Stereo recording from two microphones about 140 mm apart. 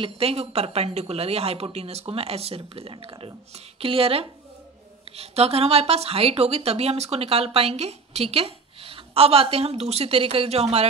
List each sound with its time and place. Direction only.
0.0 s speech: 45° right (ahead or behind)